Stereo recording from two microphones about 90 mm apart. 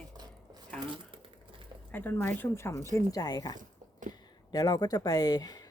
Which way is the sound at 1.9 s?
20° left (ahead or behind).